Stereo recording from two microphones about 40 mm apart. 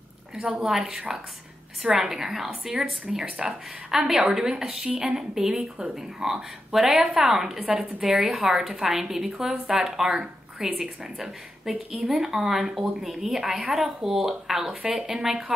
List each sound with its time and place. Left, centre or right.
0.4 s speech: centre
11.9 s speech: centre